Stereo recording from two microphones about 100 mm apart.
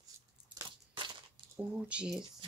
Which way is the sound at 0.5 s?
15° right (ahead or behind).